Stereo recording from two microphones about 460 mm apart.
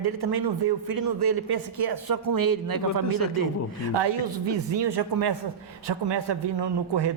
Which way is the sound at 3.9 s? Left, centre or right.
Right.